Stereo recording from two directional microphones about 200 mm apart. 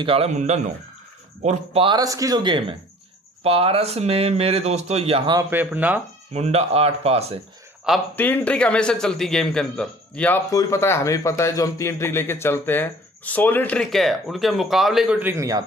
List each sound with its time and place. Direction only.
0.0 s speech: 30° right (ahead or behind); by 5.9 s 10° right (ahead or behind)
6.3 s speech: 30° right (ahead or behind)
7.9 s a man's voice: centre (ahead or behind)
8.2 s a man's voice: 10° left (ahead or behind); by 15.6 s 15° right (ahead or behind)